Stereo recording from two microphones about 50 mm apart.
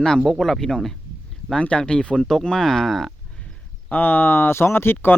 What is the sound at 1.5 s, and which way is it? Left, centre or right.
Speech, left.